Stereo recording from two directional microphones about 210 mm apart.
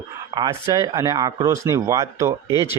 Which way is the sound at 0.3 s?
20° right (ahead or behind).